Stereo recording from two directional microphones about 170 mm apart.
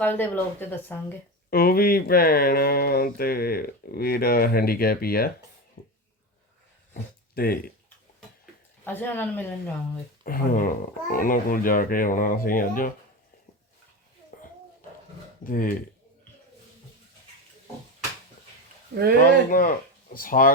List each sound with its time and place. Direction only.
0.0 s speech: 10° left (ahead or behind)
1.5 s speech: 65° left (ahead or behind)
5.8 s a sound: 55° left (ahead or behind)
7.3 s speech: 60° left (ahead or behind)
8.8 s speech: 10° left (ahead or behind)
10.2 s speech: 55° left (ahead or behind)
14.3 s a sound: 50° left (ahead or behind)
15.4 s speech: 55° left (ahead or behind)
19.5 s speech: 55° left (ahead or behind)